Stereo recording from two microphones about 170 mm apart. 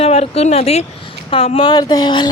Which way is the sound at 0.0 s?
35° left (ahead or behind).